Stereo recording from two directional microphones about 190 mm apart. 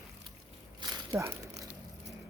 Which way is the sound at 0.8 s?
20° right (ahead or behind).